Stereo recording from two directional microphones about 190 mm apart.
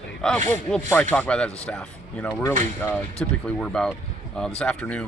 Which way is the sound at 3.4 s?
5° left (ahead or behind).